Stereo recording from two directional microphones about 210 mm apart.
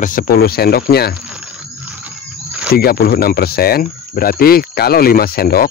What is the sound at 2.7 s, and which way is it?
Speech, 45° left (ahead or behind).